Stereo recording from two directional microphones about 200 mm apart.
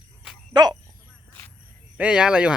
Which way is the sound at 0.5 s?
20° right (ahead or behind).